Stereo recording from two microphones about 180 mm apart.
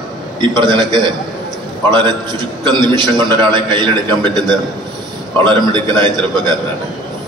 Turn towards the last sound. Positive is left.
turn(degrees=-25)  # may be behind; listen again after turning